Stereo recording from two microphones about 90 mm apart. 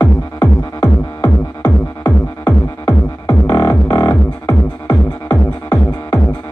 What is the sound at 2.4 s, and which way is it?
Music, 40° left (ahead or behind).